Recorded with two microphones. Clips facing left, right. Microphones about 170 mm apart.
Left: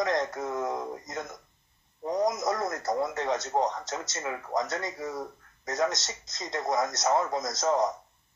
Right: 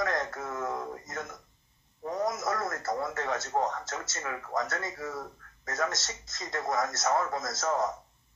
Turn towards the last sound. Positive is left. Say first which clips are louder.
# left 3 dB
turn(degrees=20)  # may be behind; listen again after turning